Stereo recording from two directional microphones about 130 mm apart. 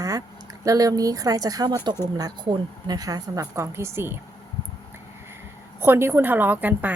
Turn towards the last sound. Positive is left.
turn(degrees=-15)  # may be behind; listen again after turning